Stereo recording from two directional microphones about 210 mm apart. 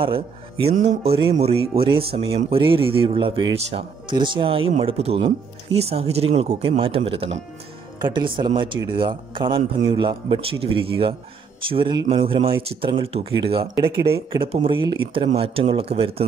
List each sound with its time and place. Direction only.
0.0 s speech: 25° right (ahead or behind)